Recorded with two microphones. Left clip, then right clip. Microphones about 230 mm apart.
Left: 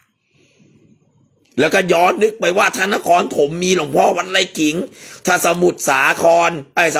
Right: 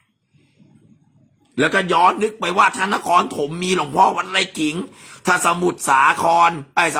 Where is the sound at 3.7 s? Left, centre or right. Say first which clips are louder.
Even; centre.